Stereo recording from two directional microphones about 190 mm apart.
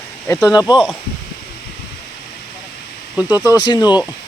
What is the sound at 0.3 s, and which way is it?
Speech, 15° left (ahead or behind).